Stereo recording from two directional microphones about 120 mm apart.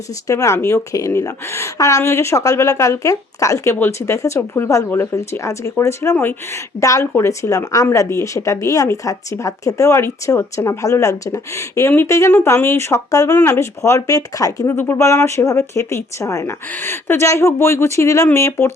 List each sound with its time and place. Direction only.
0.3 s speech: 25° left (ahead or behind)